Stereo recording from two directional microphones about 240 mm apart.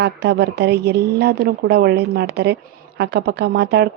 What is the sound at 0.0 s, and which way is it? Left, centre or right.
Speech, right.